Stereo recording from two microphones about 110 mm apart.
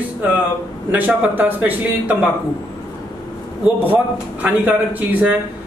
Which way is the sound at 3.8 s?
15° right (ahead or behind).